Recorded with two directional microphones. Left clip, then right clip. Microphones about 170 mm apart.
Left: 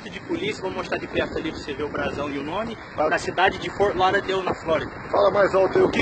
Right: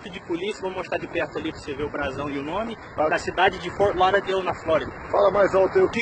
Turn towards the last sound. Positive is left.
turn(degrees=0)  # may be behind; listen again after turning